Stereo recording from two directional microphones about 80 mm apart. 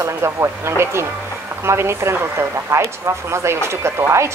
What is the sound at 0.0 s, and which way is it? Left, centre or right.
Speech, right.